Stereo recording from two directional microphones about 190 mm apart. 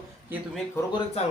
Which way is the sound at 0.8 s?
15° left (ahead or behind).